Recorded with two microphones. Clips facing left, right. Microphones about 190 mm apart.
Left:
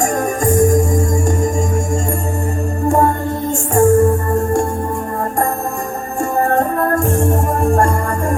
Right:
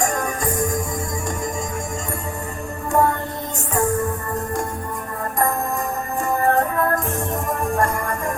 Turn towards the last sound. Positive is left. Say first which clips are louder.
# left 4 dB
turn(degrees=50)  # may be behind; listen again after turning